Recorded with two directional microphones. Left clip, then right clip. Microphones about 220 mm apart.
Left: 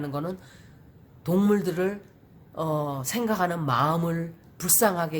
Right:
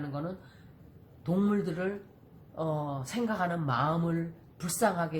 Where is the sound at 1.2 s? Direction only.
50° left (ahead or behind).